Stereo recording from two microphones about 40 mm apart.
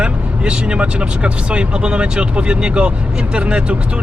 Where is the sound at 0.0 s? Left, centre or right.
Right.